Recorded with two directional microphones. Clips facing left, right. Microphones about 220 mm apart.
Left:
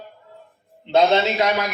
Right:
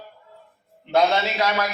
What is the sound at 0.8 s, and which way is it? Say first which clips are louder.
Speech: left 3 dB; 20° left (ahead or behind).